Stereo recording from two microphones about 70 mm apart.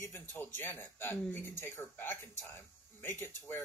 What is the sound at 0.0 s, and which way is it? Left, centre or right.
Speech, left.